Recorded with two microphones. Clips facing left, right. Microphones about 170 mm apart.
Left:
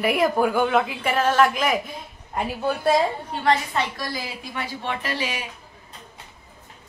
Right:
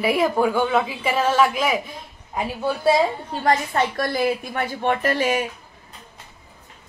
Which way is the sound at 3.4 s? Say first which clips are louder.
Right 2 dB; 50° right (ahead or behind).